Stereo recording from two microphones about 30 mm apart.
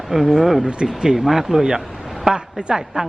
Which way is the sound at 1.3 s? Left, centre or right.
Centre.